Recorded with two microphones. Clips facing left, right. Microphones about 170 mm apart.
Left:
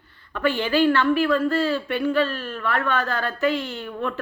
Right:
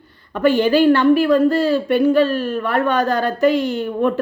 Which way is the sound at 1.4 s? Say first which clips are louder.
Right 7 dB; 40° right (ahead or behind).